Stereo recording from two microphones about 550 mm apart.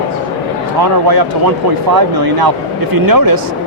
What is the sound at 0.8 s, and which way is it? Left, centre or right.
Speech, right.